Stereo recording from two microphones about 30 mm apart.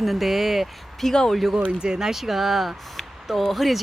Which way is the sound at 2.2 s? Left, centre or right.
Centre.